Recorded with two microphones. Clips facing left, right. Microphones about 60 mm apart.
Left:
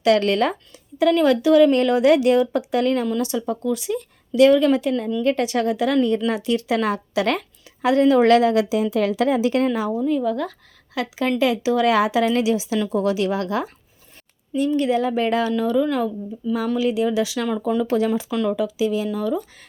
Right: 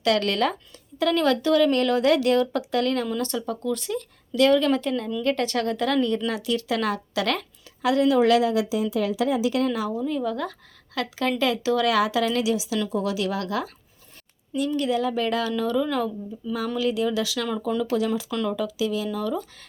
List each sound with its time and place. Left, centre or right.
0.0 s a woman's voice: left
6.2 s a woman's voice: left
9.6 s a woman's voice: left
10.0 s a woman's voice: centre; by 15.5 s left
15.5 s a woman's voice: centre
17.8 s a woman's voice: left
18.3 s a woman's voice: centre
19.1 s speech: centre